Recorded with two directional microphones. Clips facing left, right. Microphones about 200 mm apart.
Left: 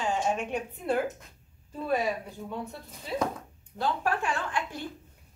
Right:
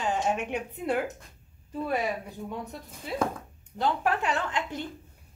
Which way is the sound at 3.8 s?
20° right (ahead or behind).